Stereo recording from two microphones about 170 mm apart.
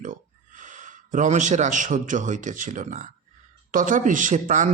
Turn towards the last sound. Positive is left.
turn(degrees=-45)  # may be behind; listen again after turning